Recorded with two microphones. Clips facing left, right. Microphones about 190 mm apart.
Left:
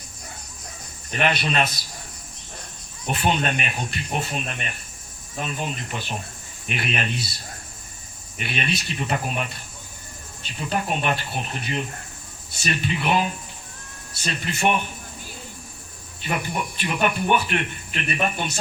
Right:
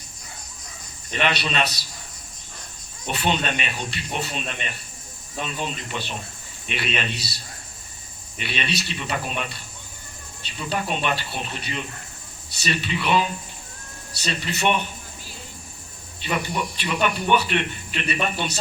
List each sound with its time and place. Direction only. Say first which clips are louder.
1.2 s speech: left 1 dB; 45° left (ahead or behind)
3.1 s speech: left 1 dB; 50° left (ahead or behind)
6.7 s speech: left 1 dB; 50° left (ahead or behind)
8.4 s speech: left 1 dB; 50° left (ahead or behind)
16.2 s speech: right 1 dB; 50° left (ahead or behind)